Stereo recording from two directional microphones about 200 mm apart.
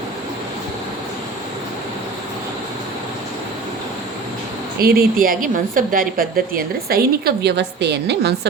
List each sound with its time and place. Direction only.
4.8 s a woman's voice: 50° right (ahead or behind)